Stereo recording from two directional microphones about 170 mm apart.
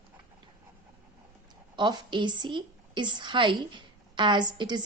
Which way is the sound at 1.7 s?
25° right (ahead or behind).